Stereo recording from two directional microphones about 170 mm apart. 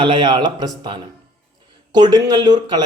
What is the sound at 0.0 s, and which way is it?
A man's voice, 30° right (ahead or behind).